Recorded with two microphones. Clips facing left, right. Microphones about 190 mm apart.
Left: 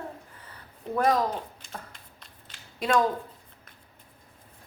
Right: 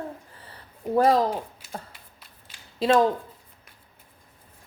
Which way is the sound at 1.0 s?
30° right (ahead or behind).